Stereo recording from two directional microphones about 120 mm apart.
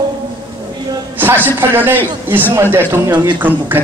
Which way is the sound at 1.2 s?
15° right (ahead or behind).